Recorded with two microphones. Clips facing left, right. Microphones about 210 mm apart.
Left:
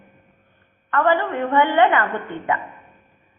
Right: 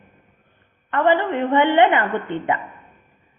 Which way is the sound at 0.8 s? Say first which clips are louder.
Right 1 dB; 20° right (ahead or behind).